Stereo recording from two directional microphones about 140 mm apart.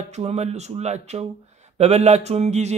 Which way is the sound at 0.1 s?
50° right (ahead or behind).